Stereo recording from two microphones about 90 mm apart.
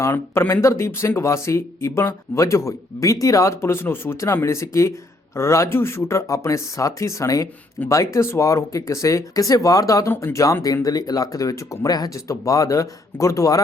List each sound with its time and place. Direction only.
0.0 s speech: 25° left (ahead or behind)
10.1 s speech: 25° left (ahead or behind)
10.3 s speech: 35° left (ahead or behind)